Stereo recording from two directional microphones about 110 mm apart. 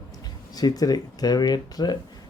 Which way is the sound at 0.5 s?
35° left (ahead or behind).